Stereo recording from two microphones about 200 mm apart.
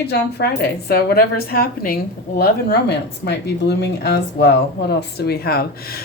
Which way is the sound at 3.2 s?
60° left (ahead or behind).